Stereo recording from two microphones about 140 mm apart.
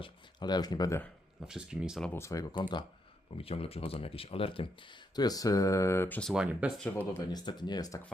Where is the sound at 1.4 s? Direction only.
5° right (ahead or behind).